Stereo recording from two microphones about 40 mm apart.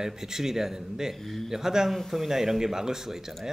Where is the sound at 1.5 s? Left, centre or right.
Centre.